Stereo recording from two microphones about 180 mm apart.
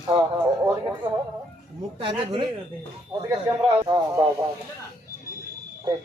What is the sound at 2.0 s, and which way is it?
Speech, 30° right (ahead or behind).